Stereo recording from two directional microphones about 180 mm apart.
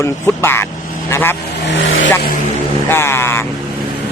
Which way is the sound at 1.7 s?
80° left.